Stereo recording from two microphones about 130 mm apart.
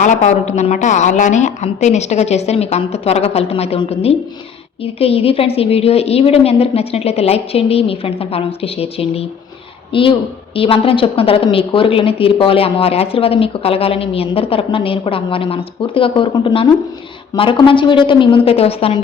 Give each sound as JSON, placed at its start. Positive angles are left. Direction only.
{"t": 0.0, "sound": "a woman's voice", "side_deg": 65}